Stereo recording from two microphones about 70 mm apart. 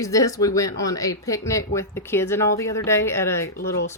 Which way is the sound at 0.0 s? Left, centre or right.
Left.